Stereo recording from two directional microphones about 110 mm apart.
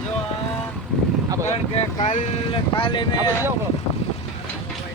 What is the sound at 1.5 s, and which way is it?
Speech, 80° left.